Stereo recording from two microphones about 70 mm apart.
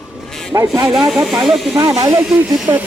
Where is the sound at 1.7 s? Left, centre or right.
Right.